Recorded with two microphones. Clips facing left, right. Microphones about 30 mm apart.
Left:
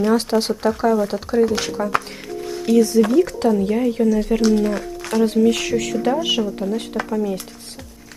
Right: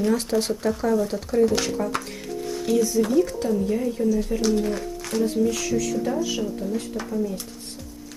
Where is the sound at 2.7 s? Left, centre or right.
Left.